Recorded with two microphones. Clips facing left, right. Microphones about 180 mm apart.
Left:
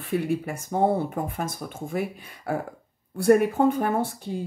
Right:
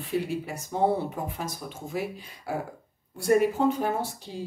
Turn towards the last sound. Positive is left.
turn(degrees=55)  # may be behind; listen again after turning